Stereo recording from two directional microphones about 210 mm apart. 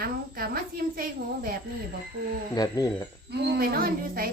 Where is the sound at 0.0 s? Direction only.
45° right (ahead or behind).